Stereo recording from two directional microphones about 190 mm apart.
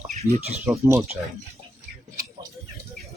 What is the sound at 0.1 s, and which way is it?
Speech, 35° right (ahead or behind).